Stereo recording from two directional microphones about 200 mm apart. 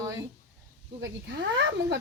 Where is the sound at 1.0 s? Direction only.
65° right (ahead or behind).